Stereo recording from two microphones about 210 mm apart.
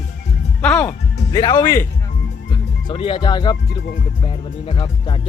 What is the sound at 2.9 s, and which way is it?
Speech, 25° left (ahead or behind).